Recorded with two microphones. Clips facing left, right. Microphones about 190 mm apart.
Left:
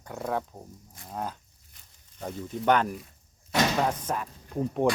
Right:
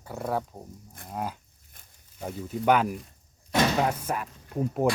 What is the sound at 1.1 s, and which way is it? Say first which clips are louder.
Dog: right 1 dB; 10° right (ahead or behind).